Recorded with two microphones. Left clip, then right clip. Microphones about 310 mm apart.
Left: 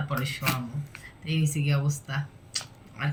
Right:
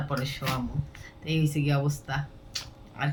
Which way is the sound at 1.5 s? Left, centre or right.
Centre.